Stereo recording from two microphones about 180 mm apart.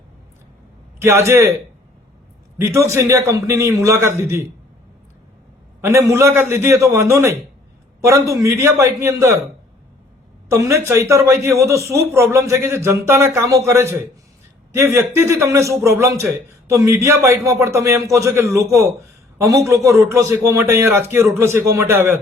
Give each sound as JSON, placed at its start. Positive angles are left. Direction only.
{"t": 0.9, "sound": "a man's voice", "side_deg": -15}
{"t": 2.6, "sound": "a man's voice", "side_deg": -15}
{"t": 5.8, "sound": "a man's voice", "side_deg": -15}
{"t": 10.5, "sound": "a man's voice", "side_deg": -15}